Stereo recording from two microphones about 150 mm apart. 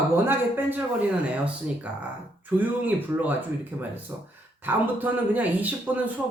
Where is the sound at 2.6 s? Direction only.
10° right (ahead or behind).